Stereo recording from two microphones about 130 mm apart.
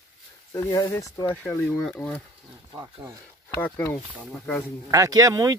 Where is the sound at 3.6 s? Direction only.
15° left (ahead or behind).